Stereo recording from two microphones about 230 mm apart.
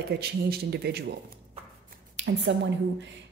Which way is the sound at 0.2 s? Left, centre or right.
Right.